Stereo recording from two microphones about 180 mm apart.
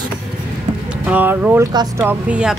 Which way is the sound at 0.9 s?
10° right (ahead or behind).